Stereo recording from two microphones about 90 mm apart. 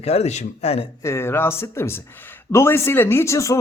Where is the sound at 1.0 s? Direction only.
30° left (ahead or behind).